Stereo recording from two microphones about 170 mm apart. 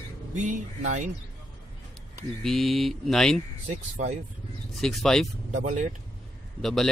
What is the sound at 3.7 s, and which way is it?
Speech, 45° right (ahead or behind).